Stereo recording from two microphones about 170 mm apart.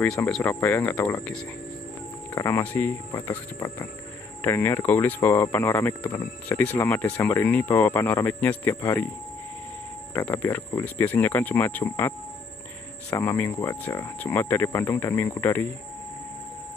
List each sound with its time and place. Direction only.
0.0 s speech: 5° left (ahead or behind)
2.3 s speech: 15° left (ahead or behind)
10.1 s speech: 10° left (ahead or behind)
13.1 s speech: 15° left (ahead or behind)